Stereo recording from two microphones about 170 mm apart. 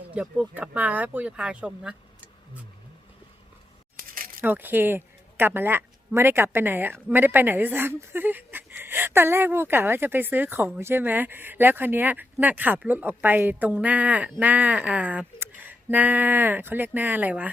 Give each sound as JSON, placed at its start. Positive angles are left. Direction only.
{"t": 0.1, "sound": "speech", "side_deg": -5}
{"t": 3.9, "sound": "a sound", "side_deg": -55}
{"t": 4.4, "sound": "speech", "side_deg": -10}